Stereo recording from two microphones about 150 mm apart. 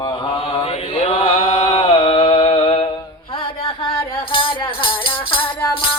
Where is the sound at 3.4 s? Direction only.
35° left (ahead or behind).